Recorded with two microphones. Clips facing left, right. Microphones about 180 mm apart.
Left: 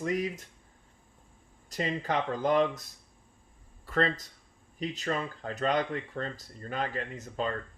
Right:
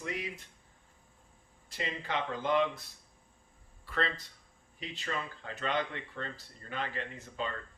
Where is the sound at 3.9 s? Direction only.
45° left (ahead or behind).